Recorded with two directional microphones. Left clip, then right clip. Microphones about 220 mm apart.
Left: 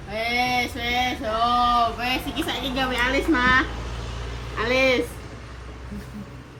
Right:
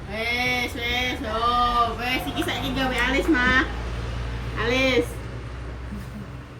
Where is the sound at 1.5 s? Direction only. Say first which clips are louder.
Left 1 dB; 25° left (ahead or behind).